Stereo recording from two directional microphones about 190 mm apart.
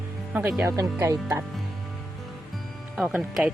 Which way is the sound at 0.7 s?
20° right (ahead or behind).